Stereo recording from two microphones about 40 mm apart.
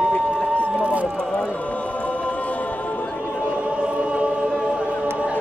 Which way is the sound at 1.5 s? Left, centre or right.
Left.